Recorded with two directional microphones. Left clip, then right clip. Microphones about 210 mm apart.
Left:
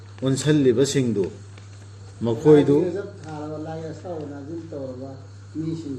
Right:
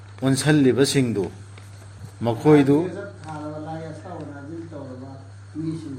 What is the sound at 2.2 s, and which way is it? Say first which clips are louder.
Speech: left 1 dB; 55° right (ahead or behind).